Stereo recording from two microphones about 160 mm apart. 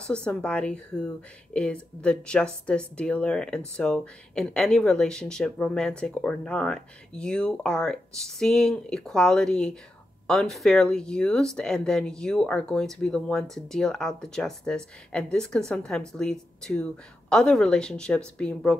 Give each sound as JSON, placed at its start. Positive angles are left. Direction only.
{"t": 0.0, "sound": "speech", "side_deg": 5}